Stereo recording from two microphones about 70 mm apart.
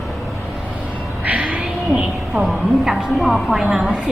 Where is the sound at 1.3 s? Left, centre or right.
Centre.